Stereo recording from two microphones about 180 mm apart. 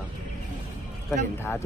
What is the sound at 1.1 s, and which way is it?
Speech, 10° left (ahead or behind).